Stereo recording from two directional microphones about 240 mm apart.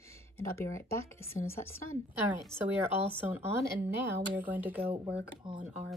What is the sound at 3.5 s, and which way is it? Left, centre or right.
A woman's voice, centre.